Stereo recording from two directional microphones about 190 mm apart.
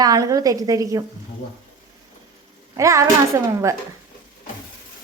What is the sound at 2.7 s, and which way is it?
A child's voice, 15° right (ahead or behind).